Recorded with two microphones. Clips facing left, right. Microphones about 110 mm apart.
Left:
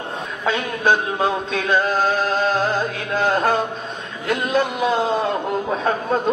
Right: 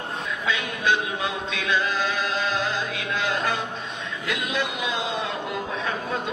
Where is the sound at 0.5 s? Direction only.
45° left (ahead or behind).